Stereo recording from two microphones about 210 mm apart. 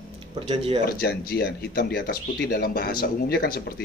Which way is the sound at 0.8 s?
45° left (ahead or behind).